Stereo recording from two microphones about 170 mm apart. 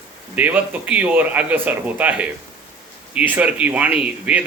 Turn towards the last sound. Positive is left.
turn(degrees=-5)  # may be behind; listen again after turning